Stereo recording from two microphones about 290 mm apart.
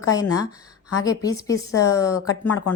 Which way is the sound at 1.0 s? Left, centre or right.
Centre.